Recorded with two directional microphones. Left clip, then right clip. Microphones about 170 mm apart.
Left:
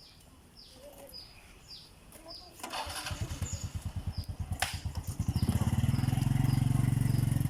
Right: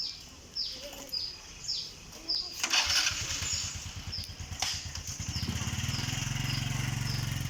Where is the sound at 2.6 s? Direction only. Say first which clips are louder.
Right 10 dB; 35° left (ahead or behind).